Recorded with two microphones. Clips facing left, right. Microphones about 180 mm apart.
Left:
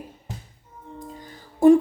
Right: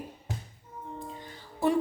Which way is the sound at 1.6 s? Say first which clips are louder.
Left 13 dB; 50° left (ahead or behind).